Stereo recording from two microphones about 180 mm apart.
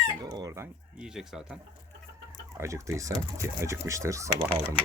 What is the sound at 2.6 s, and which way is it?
Speech, 15° right (ahead or behind).